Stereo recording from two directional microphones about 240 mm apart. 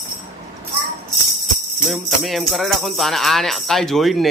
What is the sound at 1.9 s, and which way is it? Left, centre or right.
Speech, centre.